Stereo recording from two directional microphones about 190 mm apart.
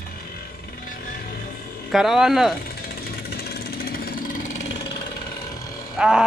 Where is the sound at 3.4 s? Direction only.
55° left (ahead or behind).